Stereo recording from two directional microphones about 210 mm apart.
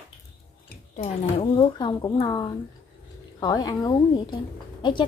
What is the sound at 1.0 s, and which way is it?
A woman's voice, 30° left (ahead or behind).